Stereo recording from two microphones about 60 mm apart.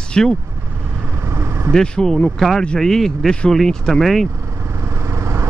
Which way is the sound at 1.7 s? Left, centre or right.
Centre.